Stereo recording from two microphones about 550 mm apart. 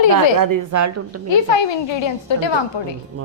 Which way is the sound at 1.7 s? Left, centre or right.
Left.